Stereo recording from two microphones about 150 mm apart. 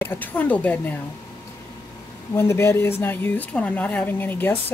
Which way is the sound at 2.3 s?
15° left (ahead or behind).